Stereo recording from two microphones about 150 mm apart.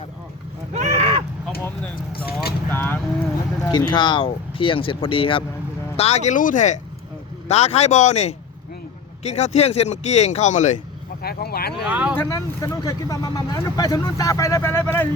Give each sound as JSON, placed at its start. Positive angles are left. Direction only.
{"t": 0.7, "sound": "a sound", "side_deg": -45}
{"t": 2.1, "sound": "speech", "side_deg": 90}
{"t": 2.7, "sound": "speech", "side_deg": 15}
{"t": 3.6, "sound": "speech", "side_deg": 25}
{"t": 7.4, "sound": "speech", "side_deg": 45}
{"t": 11.2, "sound": "speech", "side_deg": 90}
{"t": 11.9, "sound": "speech", "side_deg": -10}
{"t": 12.1, "sound": "speech", "side_deg": 20}